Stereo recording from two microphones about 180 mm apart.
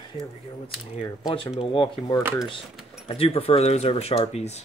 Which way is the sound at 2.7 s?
5° right (ahead or behind).